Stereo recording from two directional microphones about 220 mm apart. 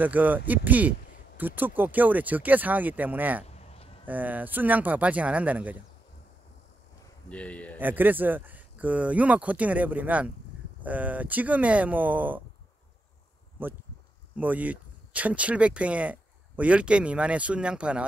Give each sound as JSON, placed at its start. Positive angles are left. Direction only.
{"t": 0.0, "sound": "speech", "side_deg": -5}
{"t": 3.4, "sound": "a sound", "side_deg": 25}
{"t": 4.0, "sound": "speech", "side_deg": -10}
{"t": 7.2, "sound": "speech", "side_deg": 5}
{"t": 7.8, "sound": "speech", "side_deg": -10}
{"t": 13.6, "sound": "speech", "side_deg": -10}